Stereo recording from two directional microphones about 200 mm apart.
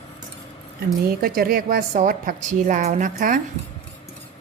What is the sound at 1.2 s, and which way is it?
A woman's voice, 50° right (ahead or behind).